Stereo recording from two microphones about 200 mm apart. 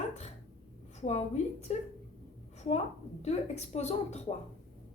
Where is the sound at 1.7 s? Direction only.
35° left (ahead or behind).